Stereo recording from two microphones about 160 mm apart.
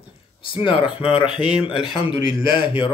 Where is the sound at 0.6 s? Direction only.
30° left (ahead or behind).